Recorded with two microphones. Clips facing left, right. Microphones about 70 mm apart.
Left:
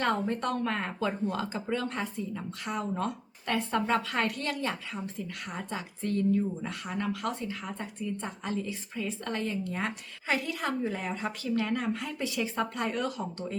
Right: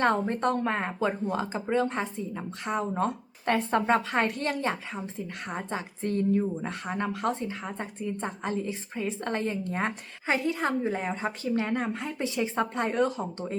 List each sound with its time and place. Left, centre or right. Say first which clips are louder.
0.0 s speech: right 4 dB; right